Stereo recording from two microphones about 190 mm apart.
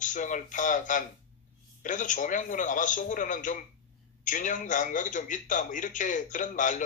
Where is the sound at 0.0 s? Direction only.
40° left (ahead or behind).